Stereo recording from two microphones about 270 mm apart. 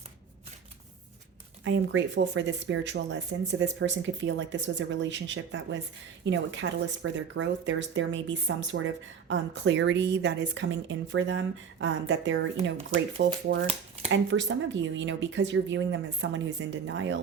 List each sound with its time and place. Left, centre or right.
1.6 s speech: right